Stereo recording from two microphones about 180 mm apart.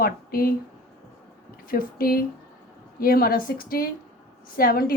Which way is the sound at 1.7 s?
55° left (ahead or behind).